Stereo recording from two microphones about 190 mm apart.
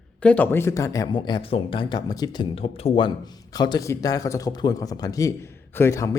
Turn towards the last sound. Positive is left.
turn(degrees=15)  # may be behind; listen again after turning